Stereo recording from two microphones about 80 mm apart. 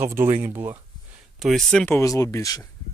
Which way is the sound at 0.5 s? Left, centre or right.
Right.